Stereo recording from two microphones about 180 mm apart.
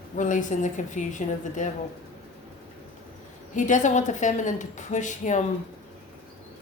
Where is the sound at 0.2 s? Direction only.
45° left (ahead or behind).